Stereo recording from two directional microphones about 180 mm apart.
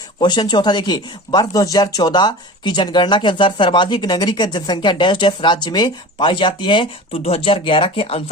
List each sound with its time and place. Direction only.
0.2 s speech: 25° left (ahead or behind)